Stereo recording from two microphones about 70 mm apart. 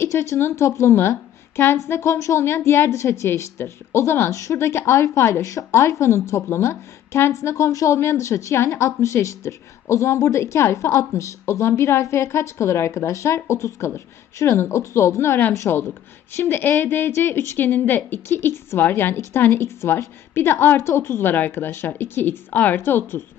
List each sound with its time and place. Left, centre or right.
0.0 s a woman's voice: left